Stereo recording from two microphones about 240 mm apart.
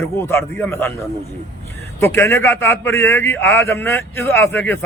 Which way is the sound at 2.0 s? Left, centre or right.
Centre.